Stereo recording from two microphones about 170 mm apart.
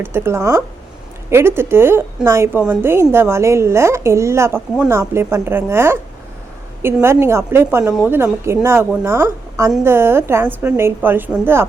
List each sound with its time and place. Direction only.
0.0 s a woman's voice: 15° right (ahead or behind)